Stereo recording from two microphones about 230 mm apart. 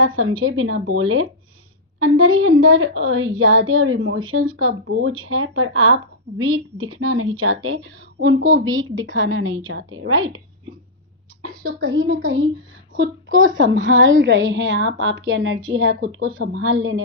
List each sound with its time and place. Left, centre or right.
0.2 s speech: right
11.4 s a sound: right
11.9 s speech: right
13.3 s speech: right
13.8 s speech: right